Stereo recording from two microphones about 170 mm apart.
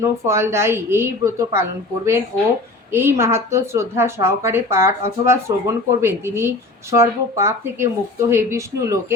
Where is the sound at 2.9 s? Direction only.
15° right (ahead or behind).